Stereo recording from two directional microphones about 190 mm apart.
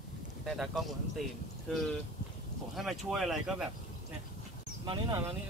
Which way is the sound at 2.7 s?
Centre (ahead or behind).